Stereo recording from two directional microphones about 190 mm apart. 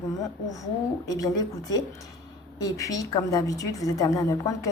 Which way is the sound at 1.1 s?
20° left (ahead or behind).